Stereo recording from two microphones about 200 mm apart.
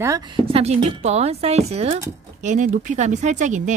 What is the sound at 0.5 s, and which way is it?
Speech, 30° right (ahead or behind).